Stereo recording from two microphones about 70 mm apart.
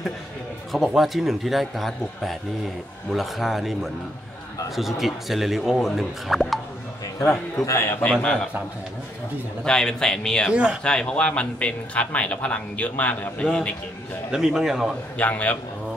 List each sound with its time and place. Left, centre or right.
0.7 s speech: centre
7.6 s a man's voice: left
8.1 s a man's voice: centre
9.7 s a man's voice: centre
10.5 s speech: centre
10.8 s a man's voice: centre
14.3 s speech: centre
15.1 s a man's voice: left